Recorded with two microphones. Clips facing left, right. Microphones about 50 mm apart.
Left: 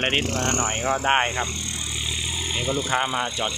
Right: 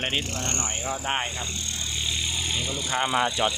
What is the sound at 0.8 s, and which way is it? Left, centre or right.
Speech, left.